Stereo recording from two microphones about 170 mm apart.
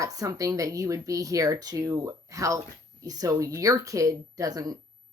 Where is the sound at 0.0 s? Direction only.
20° right (ahead or behind).